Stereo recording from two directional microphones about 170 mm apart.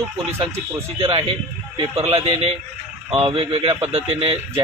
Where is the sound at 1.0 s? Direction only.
30° right (ahead or behind).